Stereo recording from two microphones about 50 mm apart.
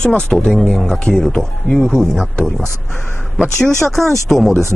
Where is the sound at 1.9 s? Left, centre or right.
Centre.